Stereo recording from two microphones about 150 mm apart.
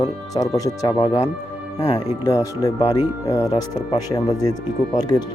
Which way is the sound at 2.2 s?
25° left (ahead or behind).